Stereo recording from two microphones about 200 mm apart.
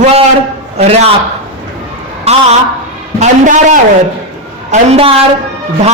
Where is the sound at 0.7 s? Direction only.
35° right (ahead or behind).